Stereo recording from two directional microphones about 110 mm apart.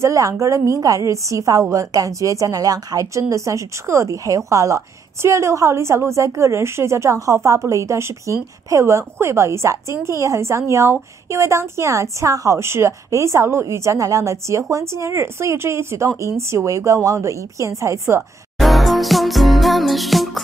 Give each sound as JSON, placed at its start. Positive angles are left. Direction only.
{"t": 0.0, "sound": "a woman's voice", "side_deg": -30}
{"t": 18.6, "sound": "music", "side_deg": 0}